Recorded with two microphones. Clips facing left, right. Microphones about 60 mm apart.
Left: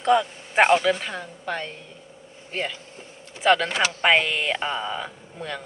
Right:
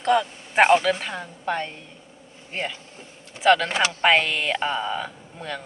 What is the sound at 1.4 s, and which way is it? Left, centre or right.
A woman's voice, centre.